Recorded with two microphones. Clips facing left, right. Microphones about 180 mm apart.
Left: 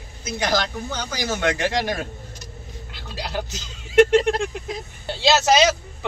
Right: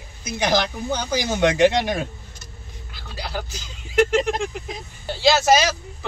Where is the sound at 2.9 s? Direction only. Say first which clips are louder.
Left 2 dB; 20° left (ahead or behind).